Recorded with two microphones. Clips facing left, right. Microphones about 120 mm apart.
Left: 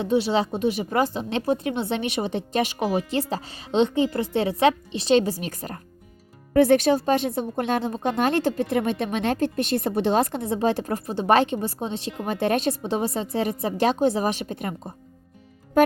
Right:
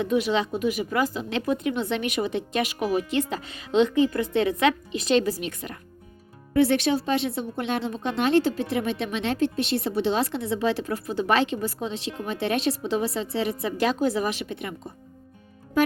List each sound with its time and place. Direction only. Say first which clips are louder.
0.0 s a woman's voice: left 2 dB; 30° left (ahead or behind)